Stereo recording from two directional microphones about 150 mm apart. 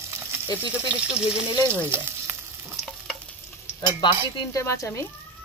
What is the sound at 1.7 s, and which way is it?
Frying, 15° right (ahead or behind).